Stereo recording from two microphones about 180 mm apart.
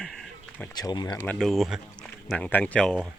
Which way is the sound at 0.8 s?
25° left (ahead or behind).